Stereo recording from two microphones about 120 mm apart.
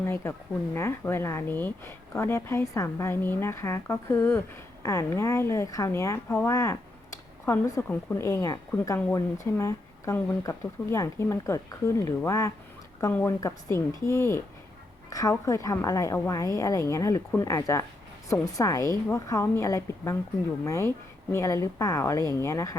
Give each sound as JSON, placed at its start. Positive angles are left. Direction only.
{"t": 0.0, "sound": "speech", "side_deg": 20}